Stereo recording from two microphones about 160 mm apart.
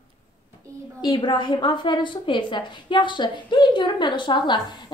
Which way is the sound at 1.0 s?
25° left (ahead or behind).